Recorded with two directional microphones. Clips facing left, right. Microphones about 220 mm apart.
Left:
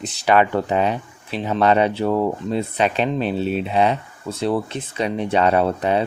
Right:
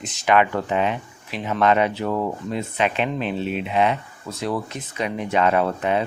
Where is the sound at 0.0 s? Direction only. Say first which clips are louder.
Left 2 dB; 35° left (ahead or behind).